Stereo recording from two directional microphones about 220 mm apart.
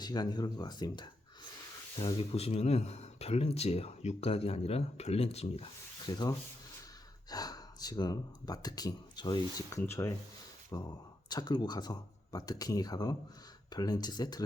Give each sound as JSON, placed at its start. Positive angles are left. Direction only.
{"t": 0.0, "sound": "speech", "side_deg": 20}
{"t": 6.1, "sound": "speech", "side_deg": 15}